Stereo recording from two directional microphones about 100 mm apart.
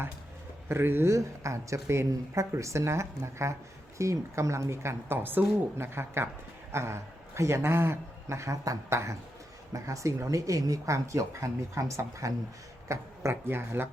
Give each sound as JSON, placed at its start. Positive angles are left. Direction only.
{"t": 0.7, "sound": "a man's voice", "side_deg": -25}